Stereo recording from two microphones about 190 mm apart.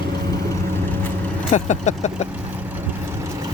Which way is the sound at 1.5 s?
40° left (ahead or behind).